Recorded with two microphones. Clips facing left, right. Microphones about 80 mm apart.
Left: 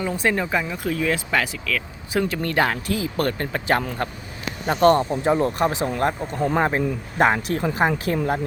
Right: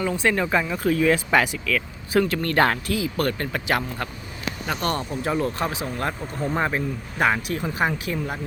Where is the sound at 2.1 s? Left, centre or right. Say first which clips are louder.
Right 2 dB; centre.